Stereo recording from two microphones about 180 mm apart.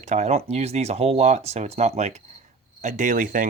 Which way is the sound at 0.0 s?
40° right (ahead or behind).